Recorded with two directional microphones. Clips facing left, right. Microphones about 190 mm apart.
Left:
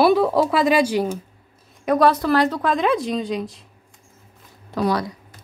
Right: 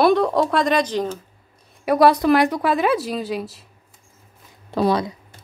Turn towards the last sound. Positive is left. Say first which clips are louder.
# right 2 dB
turn(degrees=-25)  # may be behind; listen again after turning